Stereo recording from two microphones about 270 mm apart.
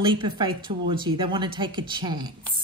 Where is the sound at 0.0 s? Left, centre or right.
Centre.